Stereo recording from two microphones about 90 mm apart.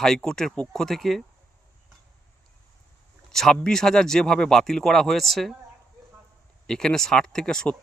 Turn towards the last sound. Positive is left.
turn(degrees=10)  # may be behind; listen again after turning